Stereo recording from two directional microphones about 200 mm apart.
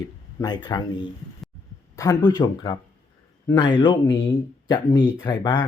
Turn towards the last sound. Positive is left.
turn(degrees=20)  # may be behind; listen again after turning